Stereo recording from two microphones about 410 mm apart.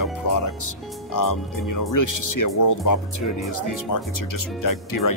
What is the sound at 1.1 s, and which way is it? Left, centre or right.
Speech, left.